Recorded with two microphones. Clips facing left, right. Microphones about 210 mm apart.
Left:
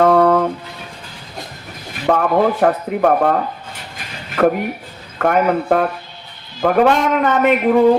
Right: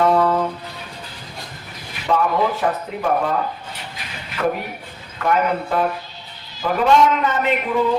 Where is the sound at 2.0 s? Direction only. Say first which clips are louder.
Left 4 dB; 55° left (ahead or behind).